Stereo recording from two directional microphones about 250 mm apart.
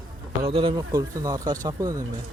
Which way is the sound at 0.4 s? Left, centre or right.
Right.